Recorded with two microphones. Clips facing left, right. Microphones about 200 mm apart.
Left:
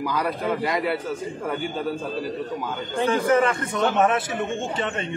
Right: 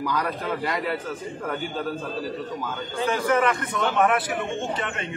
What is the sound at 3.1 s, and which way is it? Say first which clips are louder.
Speech: left 2 dB; 30° left (ahead or behind).